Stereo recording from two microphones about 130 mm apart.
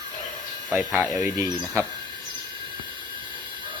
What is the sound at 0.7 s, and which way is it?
Speech, 15° right (ahead or behind).